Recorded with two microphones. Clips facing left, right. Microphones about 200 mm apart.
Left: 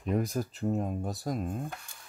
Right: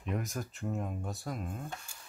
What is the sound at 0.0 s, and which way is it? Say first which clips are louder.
Speech: left 7 dB; 35° left (ahead or behind).